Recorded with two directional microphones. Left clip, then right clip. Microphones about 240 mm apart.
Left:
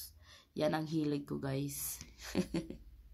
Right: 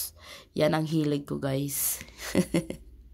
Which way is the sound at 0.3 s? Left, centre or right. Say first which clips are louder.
Right 9 dB; right.